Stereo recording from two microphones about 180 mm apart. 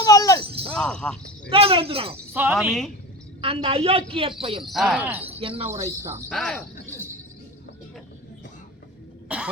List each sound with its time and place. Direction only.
0.0 s shatter: 20° left (ahead or behind)
0.7 s speech: 5° left (ahead or behind)
1.5 s a woman's voice: 30° right (ahead or behind)
2.3 s speech: 10° right (ahead or behind)
2.6 s speech: centre (ahead or behind)
3.4 s a woman's voice: 30° right (ahead or behind)
4.6 s speech: centre (ahead or behind)
5.4 s a woman's voice: 30° right (ahead or behind)
6.3 s speech: 5° left (ahead or behind)
6.9 s music: 15° right (ahead or behind)